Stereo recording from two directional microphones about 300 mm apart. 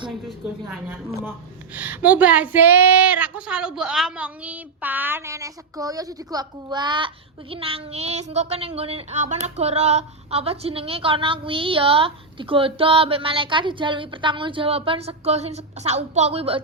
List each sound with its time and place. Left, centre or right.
0.7 s speech: centre